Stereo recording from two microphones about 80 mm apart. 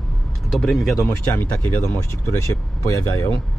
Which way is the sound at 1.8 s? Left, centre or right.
Left.